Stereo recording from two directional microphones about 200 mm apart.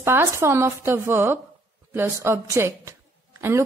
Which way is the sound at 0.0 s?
10° right (ahead or behind).